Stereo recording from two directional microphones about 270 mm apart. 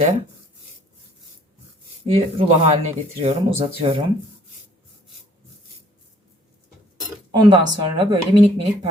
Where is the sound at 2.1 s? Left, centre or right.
Right.